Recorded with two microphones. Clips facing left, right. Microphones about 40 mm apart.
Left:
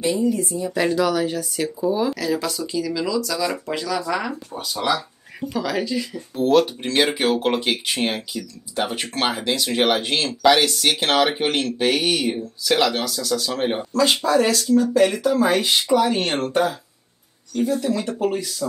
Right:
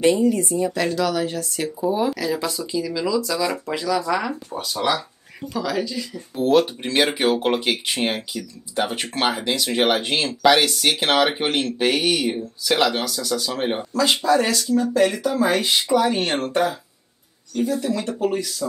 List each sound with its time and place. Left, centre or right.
0.0 s speech: right
0.7 s speech: centre
1.9 s speech: centre
6.3 s speech: centre
14.6 s speech: centre
15.0 s speech: centre
17.7 s speech: centre
18.1 s speech: centre